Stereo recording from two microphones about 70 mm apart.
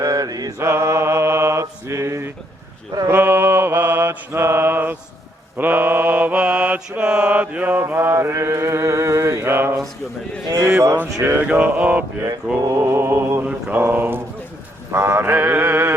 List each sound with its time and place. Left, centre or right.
0.0 s mantra: right
0.6 s mantra: right
10.5 s speech: right
11.5 s mantra: right
12.7 s mantra: right